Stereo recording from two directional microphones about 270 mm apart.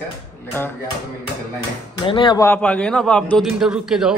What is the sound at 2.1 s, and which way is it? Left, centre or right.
A man's voice, centre.